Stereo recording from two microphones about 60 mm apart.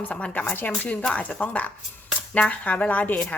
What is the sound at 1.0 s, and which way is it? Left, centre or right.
Speech, centre.